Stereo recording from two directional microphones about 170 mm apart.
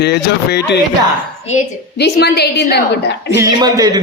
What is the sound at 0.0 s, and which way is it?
Speech, 75° left (ahead or behind).